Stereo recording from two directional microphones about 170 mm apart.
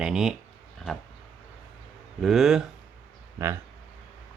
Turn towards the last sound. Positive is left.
turn(degrees=-20)  # may be behind; listen again after turning